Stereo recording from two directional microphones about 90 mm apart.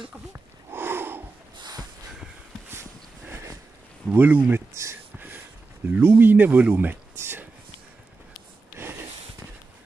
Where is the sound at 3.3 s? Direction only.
35° right (ahead or behind).